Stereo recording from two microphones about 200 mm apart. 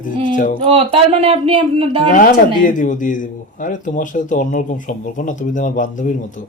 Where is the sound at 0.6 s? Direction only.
30° right (ahead or behind).